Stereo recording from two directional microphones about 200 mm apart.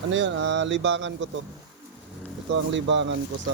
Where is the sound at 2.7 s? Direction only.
65° right (ahead or behind).